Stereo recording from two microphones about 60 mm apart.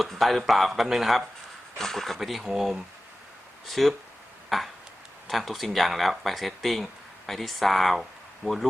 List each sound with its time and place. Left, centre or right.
0.0 s speech: centre
4.4 s a sound: centre
5.3 s speech: centre
8.4 s speech: centre